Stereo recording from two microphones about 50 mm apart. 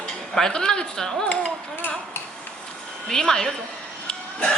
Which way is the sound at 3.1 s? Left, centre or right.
Centre.